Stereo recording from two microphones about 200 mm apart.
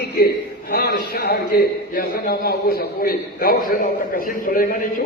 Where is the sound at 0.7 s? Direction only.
50° left (ahead or behind).